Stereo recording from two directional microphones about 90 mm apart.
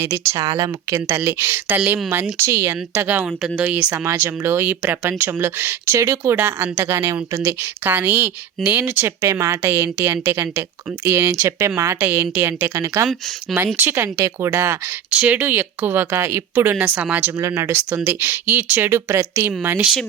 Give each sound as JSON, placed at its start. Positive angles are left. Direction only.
{"t": 0.0, "sound": "a woman's voice", "side_deg": -25}
{"t": 0.3, "sound": "speech", "side_deg": -40}
{"t": 0.9, "sound": "a woman's voice", "side_deg": -25}
{"t": 3.2, "sound": "speech", "side_deg": -10}
{"t": 4.0, "sound": "a woman's voice", "side_deg": -30}
{"t": 9.2, "sound": "speech", "side_deg": -35}
{"t": 9.6, "sound": "a woman's voice", "side_deg": -20}
{"t": 13.7, "sound": "a woman's voice", "side_deg": -25}
{"t": 15.1, "sound": "a woman's voice", "side_deg": -15}
{"t": 16.7, "sound": "speech", "side_deg": -15}
{"t": 17.4, "sound": "a woman's voice", "side_deg": -30}